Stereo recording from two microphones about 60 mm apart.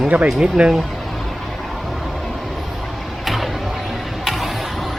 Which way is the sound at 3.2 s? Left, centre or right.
Centre.